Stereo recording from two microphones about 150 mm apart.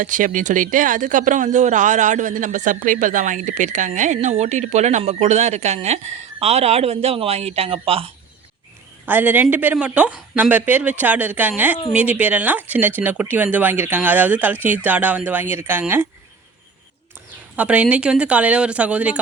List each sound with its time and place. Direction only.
0.0 s speech: 60° right (ahead or behind); by 8.1 s 40° right (ahead or behind)
9.0 s a woman's voice: 10° right (ahead or behind)
17.6 s a woman's voice: 10° right (ahead or behind)